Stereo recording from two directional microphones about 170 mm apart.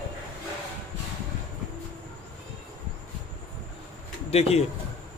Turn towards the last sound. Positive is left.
turn(degrees=35)  # may be behind; listen again after turning